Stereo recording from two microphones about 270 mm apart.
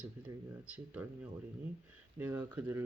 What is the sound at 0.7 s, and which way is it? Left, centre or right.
Speech, centre.